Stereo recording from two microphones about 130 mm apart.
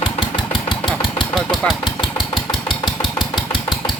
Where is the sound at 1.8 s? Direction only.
35° left (ahead or behind).